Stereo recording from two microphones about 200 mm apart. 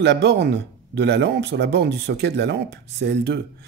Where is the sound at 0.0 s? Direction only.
60° right (ahead or behind).